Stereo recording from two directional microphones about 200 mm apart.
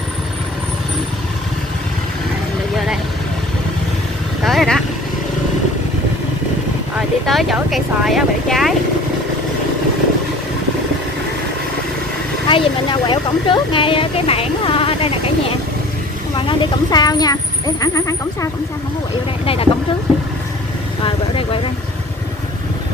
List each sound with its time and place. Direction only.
4.5 s vehicle: centre (ahead or behind)
7.0 s speech: centre (ahead or behind)
12.4 s speech: 25° left (ahead or behind)
19.4 s speech: 30° left (ahead or behind)
21.0 s vehicle: 25° left (ahead or behind)